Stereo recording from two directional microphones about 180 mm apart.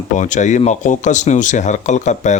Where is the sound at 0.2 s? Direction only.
45° left (ahead or behind).